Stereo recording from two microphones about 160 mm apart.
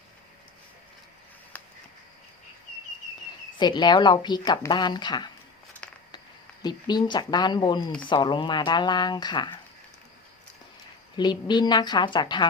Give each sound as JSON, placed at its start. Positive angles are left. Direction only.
{"t": 3.6, "sound": "speech", "side_deg": 30}
{"t": 5.8, "sound": "a sound", "side_deg": 5}
{"t": 6.6, "sound": "speech", "side_deg": 25}
{"t": 11.2, "sound": "speech", "side_deg": 25}